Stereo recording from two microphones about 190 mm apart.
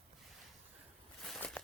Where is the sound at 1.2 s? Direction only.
Centre (ahead or behind).